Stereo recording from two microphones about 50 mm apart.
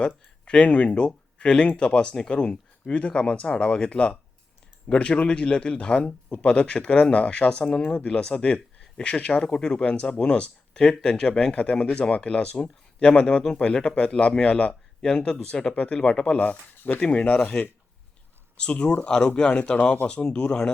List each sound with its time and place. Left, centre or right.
0.4 s speech: left